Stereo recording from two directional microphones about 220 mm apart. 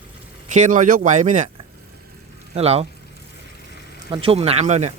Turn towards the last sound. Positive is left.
turn(degrees=-30)  # may be behind; listen again after turning